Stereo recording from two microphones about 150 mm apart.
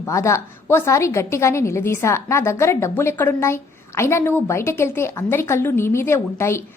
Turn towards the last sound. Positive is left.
turn(degrees=15)  # may be behind; listen again after turning